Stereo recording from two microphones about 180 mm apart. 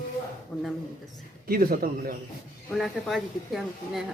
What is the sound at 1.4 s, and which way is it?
Speech, 55° right (ahead or behind).